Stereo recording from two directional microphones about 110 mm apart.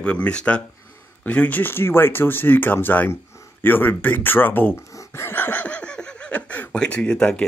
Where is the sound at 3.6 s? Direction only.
20° left (ahead or behind).